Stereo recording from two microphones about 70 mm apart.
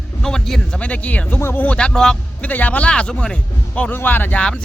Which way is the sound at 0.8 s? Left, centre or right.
Centre.